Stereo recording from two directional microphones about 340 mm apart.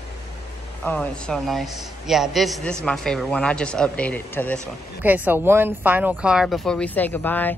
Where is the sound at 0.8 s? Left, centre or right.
Centre.